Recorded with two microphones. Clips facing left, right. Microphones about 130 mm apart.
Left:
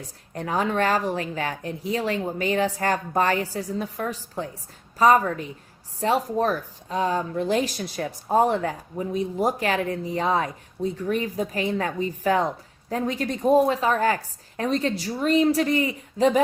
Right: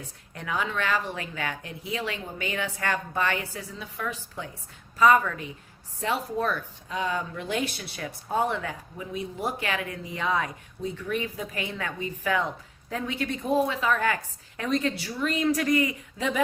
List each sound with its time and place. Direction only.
0.0 s speech: 40° left (ahead or behind)